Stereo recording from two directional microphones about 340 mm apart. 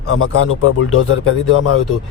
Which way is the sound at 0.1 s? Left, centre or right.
Left.